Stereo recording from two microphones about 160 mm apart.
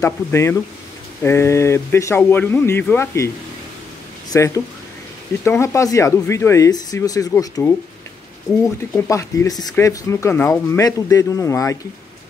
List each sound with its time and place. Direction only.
0.0 s speech: 20° left (ahead or behind)
4.3 s speech: 20° left (ahead or behind)
8.9 s speech: 20° left (ahead or behind)